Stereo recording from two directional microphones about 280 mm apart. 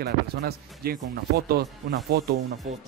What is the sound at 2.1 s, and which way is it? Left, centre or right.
Speech, right.